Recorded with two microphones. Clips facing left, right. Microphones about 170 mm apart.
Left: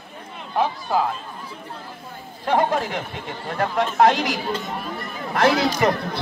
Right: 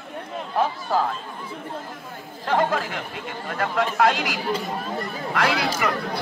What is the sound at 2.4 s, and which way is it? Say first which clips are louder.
Chatter: left 2 dB; 20° left (ahead or behind).